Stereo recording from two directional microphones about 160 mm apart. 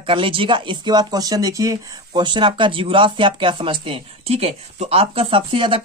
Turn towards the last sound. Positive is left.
turn(degrees=-30)  # may be behind; listen again after turning